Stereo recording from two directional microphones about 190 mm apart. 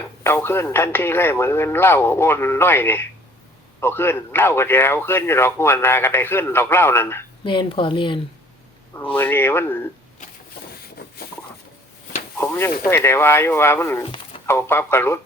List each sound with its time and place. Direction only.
0.2 s a man's voice: 15° left (ahead or behind)
7.4 s speech: 25° left (ahead or behind)
9.1 s a man's voice: 10° left (ahead or behind)
12.4 s a man's voice: 15° left (ahead or behind)
14.0 s a sound: 25° left (ahead or behind)
14.4 s a man's voice: 10° left (ahead or behind)